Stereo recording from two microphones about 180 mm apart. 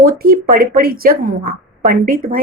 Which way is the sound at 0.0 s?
55° right (ahead or behind).